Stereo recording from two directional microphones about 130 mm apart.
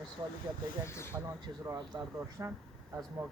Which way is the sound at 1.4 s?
35° right (ahead or behind).